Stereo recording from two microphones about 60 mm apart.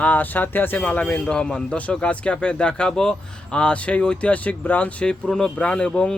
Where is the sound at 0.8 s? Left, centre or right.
Left.